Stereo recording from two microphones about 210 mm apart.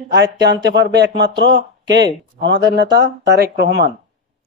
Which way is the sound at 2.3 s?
55° right (ahead or behind).